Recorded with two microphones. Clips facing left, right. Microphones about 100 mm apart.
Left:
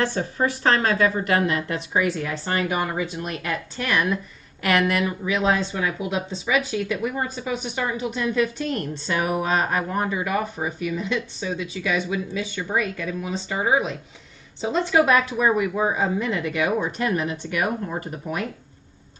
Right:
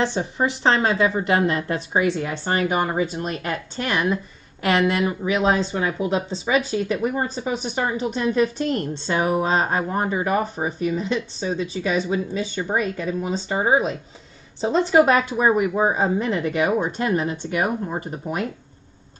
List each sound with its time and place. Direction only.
0.0 s speech: 20° right (ahead or behind)